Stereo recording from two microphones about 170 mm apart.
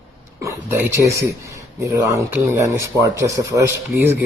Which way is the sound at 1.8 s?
15° right (ahead or behind).